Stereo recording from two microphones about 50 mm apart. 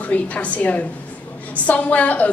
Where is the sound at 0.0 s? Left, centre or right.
Left.